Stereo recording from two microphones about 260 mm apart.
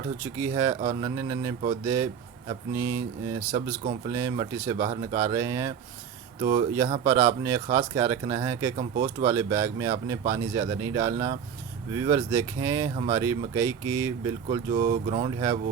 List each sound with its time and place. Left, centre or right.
0.3 s speech: centre
7.0 s speech: centre
14.7 s speech: right